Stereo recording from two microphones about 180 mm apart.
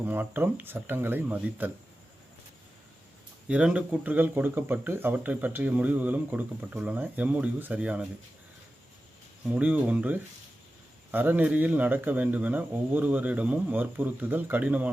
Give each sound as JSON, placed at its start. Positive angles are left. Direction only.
{"t": 0.0, "sound": "speech", "side_deg": -10}
{"t": 3.5, "sound": "speech", "side_deg": -5}
{"t": 9.5, "sound": "speech", "side_deg": -10}